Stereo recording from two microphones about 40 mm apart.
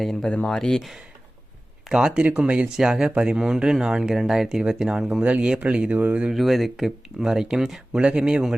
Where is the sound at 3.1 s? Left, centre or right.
Right.